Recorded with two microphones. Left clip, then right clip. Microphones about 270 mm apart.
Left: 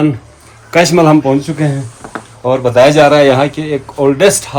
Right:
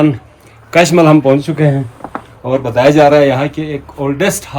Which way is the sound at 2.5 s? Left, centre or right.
Centre.